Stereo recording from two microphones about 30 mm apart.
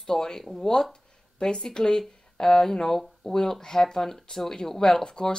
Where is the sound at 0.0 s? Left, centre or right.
Centre.